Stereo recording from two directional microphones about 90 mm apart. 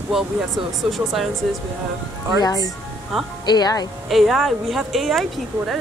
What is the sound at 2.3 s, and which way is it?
Speech, 45° left (ahead or behind).